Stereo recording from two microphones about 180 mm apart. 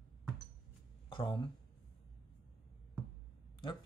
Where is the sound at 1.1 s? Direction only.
30° left (ahead or behind).